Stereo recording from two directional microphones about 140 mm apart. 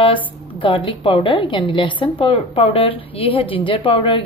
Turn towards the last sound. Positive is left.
turn(degrees=40)  # may be behind; listen again after turning